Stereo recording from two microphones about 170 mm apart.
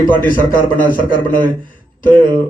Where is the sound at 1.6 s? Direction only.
55° left (ahead or behind).